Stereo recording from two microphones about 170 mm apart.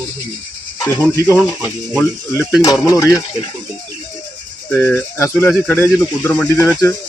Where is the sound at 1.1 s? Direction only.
20° left (ahead or behind).